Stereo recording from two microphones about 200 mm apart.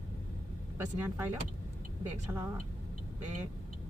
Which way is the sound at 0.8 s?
10° right (ahead or behind).